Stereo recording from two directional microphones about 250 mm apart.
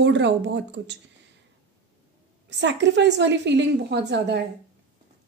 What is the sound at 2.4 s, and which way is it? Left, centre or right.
A woman's voice, right.